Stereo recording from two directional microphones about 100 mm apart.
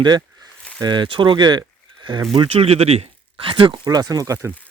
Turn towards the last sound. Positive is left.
turn(degrees=-35)  # may be behind; listen again after turning